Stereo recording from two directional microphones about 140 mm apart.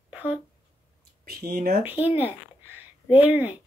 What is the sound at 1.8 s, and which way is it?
Speech, 15° right (ahead or behind).